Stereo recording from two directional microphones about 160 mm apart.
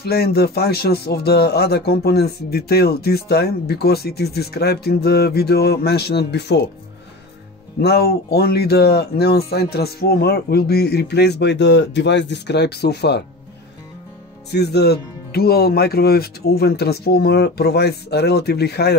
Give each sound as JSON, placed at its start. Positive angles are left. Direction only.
{"t": 0.0, "sound": "speech", "side_deg": 80}
{"t": 7.8, "sound": "speech", "side_deg": 80}
{"t": 14.5, "sound": "speech", "side_deg": 90}